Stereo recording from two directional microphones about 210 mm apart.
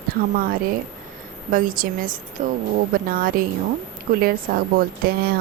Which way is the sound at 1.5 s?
40° right (ahead or behind).